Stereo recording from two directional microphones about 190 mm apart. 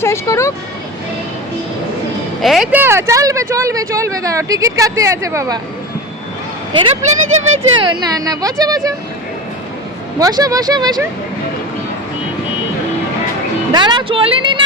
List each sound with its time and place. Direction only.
0.0 s speech: 15° left (ahead or behind)
2.4 s speech: centre (ahead or behind)
2.8 s speech: 15° right (ahead or behind)
7.0 s speech: 35° right (ahead or behind)
7.8 s speech: 20° right (ahead or behind)
10.2 s speech: 20° right (ahead or behind)
13.7 s speech: 25° right (ahead or behind)